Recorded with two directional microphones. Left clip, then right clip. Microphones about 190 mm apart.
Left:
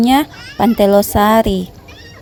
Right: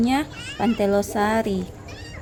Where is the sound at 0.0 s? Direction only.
50° left (ahead or behind).